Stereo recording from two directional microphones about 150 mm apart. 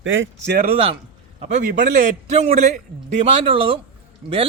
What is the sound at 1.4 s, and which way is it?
Speech, 50° right (ahead or behind).